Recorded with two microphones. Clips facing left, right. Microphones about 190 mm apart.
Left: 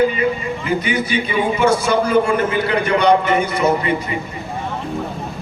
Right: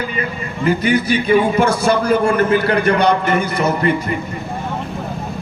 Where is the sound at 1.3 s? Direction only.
50° right (ahead or behind).